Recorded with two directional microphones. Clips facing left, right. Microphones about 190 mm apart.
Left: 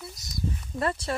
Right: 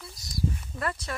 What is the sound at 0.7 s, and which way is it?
Speech, 30° left (ahead or behind).